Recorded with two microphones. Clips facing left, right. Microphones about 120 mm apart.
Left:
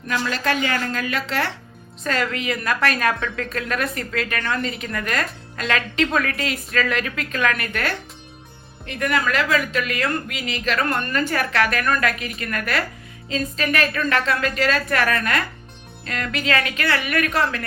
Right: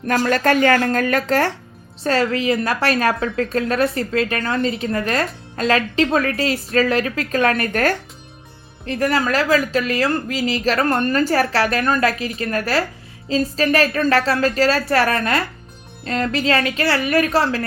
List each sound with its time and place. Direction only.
0.1 s speech: 50° right (ahead or behind)
2.0 s speech: 35° right (ahead or behind)